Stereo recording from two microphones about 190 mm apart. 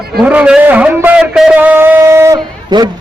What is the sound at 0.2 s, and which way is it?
A man's voice, 5° right (ahead or behind).